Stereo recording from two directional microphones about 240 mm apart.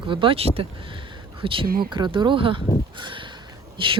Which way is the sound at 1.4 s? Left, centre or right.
Right.